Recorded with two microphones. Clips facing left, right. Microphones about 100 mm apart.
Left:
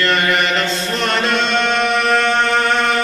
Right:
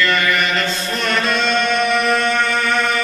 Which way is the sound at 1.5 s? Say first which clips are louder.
Left 1 dB; 25° left (ahead or behind).